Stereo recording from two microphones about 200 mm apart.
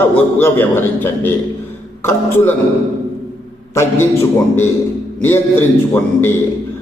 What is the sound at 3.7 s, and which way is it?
A man's voice, 15° left (ahead or behind).